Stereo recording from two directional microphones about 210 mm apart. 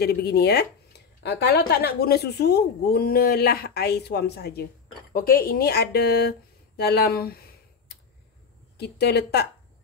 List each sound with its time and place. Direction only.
0.0 s speech: 50° left (ahead or behind)
8.7 s speech: 50° left (ahead or behind)